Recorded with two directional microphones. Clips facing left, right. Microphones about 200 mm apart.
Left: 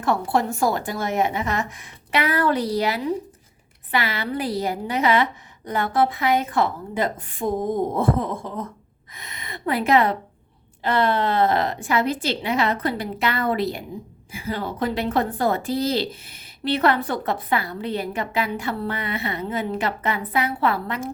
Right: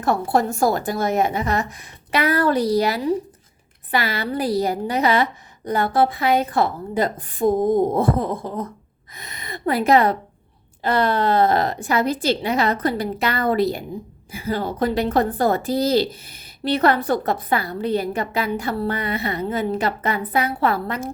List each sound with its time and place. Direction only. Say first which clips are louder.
0.0 s a woman's voice: right 2 dB; 40° right (ahead or behind)